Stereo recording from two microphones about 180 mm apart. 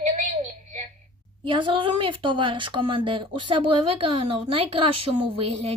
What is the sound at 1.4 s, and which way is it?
Speech, 25° right (ahead or behind).